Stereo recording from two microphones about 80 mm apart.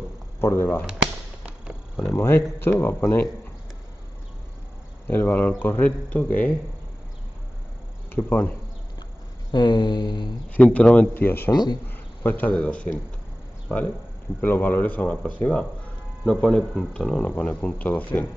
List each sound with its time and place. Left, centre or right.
0.4 s speech: left
0.8 s fireworks: centre
2.1 s speech: left
5.0 s speech: left
8.1 s speech: left
9.5 s a sound: left
10.5 s speech: centre
11.1 s speech: left
11.5 s speech: left
11.9 s speech: left
14.4 s speech: left